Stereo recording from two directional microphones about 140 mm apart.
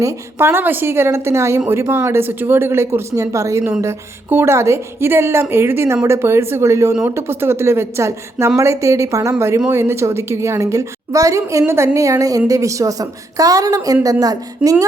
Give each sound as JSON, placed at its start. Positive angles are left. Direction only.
{"t": 0.0, "sound": "a woman's voice", "side_deg": -15}